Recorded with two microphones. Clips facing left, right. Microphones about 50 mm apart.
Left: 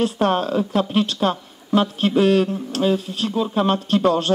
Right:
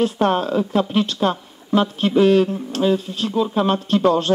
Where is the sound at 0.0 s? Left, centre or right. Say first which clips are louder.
Right 1 dB; centre.